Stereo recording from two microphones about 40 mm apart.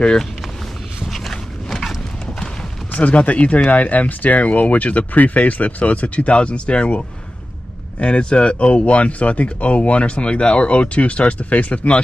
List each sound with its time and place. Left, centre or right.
1.0 s dog: centre
2.9 s speech: left
8.0 s speech: left